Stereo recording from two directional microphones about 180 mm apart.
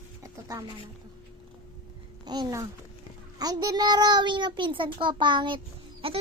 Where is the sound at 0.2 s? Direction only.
20° right (ahead or behind).